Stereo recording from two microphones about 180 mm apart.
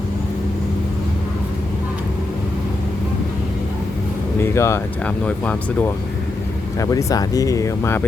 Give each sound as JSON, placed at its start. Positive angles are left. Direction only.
{"t": 4.4, "sound": "speech", "side_deg": 15}
{"t": 6.7, "sound": "speech", "side_deg": 20}